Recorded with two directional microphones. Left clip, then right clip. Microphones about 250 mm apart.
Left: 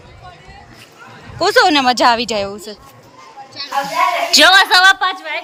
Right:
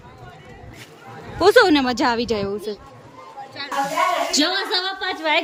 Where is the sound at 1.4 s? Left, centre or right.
Centre.